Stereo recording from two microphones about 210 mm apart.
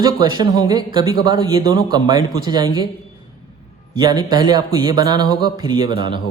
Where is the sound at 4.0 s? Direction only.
20° right (ahead or behind).